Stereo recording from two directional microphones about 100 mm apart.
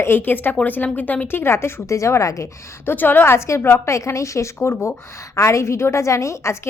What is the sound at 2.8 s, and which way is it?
A woman's voice, 20° left (ahead or behind).